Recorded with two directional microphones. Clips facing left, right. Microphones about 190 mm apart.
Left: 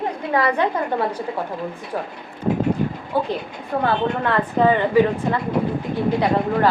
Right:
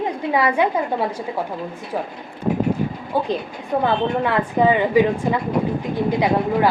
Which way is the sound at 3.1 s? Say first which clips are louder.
Right 1 dB; 15° right (ahead or behind).